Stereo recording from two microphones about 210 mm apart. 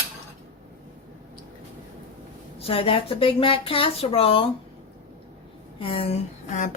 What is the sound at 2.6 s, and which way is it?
Speech, 25° left (ahead or behind).